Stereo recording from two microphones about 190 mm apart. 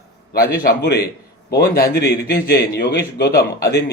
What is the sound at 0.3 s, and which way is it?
A man's voice, 50° left (ahead or behind).